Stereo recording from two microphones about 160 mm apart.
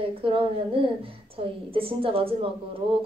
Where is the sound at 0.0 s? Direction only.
35° right (ahead or behind).